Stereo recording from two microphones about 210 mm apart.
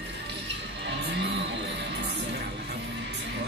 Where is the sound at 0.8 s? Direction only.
55° right (ahead or behind).